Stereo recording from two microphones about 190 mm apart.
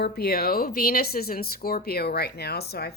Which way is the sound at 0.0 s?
55° left (ahead or behind).